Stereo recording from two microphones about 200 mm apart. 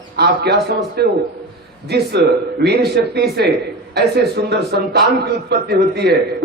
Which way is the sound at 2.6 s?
55° right (ahead or behind).